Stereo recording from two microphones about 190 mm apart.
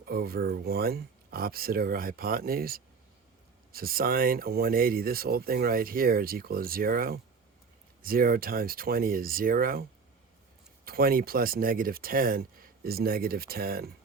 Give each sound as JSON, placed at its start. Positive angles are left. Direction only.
{"t": 0.0, "sound": "speech", "side_deg": -55}
{"t": 10.8, "sound": "speech", "side_deg": -50}